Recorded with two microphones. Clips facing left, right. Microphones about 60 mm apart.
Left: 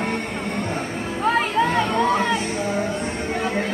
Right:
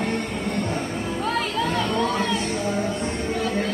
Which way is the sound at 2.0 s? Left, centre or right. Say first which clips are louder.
Left 4 dB; left.